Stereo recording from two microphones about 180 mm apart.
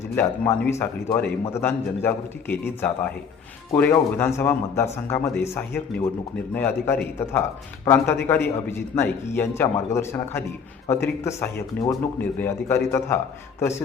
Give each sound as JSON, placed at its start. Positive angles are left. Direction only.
{"t": 0.2, "sound": "a man's voice", "side_deg": 10}